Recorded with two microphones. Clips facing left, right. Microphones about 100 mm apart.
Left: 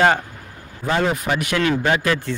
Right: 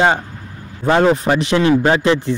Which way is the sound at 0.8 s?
35° right (ahead or behind).